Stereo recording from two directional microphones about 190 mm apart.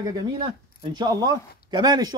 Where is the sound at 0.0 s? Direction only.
20° right (ahead or behind).